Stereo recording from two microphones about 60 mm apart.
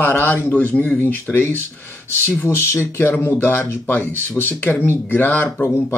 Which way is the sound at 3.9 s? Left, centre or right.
Left.